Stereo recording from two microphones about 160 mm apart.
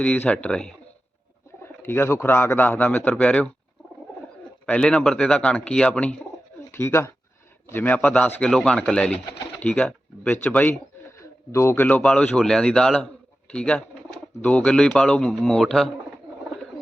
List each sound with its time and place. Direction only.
0.0 s speech: 5° left (ahead or behind)
4.6 s speech: 5° left (ahead or behind)